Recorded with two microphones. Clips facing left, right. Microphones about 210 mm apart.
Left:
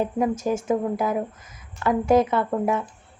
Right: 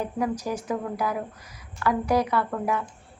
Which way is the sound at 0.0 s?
25° left (ahead or behind).